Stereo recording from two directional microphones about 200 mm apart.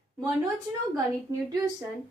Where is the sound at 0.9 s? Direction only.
15° right (ahead or behind).